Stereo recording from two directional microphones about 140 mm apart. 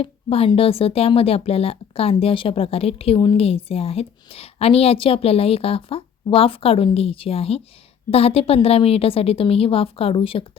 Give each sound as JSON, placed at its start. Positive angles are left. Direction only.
{"t": 0.0, "sound": "speech", "side_deg": 45}